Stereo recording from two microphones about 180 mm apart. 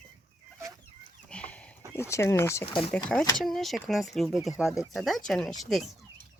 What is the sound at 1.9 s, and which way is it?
Speech, 15° left (ahead or behind).